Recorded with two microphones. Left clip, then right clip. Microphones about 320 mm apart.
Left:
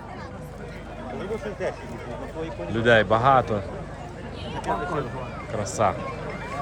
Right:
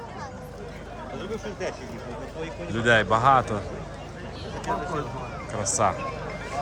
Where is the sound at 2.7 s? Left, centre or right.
Centre.